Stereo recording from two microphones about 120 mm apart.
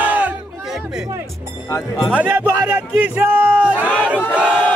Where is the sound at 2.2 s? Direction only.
15° right (ahead or behind).